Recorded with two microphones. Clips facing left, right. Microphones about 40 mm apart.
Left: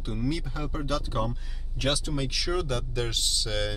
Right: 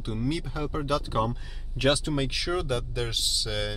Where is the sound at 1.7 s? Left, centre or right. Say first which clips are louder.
Right 4 dB; right.